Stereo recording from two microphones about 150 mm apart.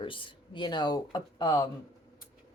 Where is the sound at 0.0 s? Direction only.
35° left (ahead or behind).